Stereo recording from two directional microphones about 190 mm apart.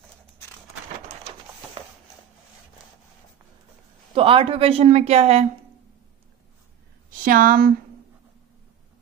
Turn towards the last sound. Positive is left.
turn(degrees=-50)  # may be behind; listen again after turning